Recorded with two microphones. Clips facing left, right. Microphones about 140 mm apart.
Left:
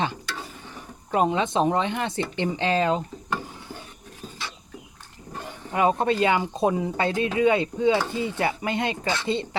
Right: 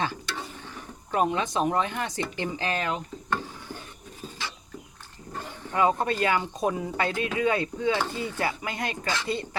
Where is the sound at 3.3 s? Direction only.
15° left (ahead or behind).